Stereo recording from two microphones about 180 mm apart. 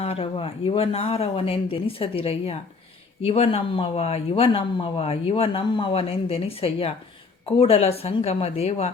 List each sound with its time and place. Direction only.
0.0 s speech: 30° left (ahead or behind)